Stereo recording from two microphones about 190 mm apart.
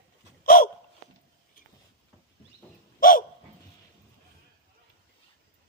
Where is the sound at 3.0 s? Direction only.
45° left (ahead or behind).